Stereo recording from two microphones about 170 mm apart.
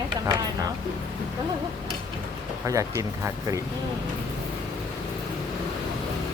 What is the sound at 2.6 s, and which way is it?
Speech, 20° right (ahead or behind).